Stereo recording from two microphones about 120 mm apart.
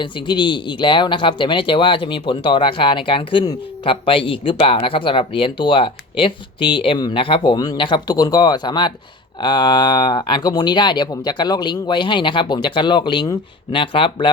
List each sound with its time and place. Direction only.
0.0 s speech: 40° left (ahead or behind)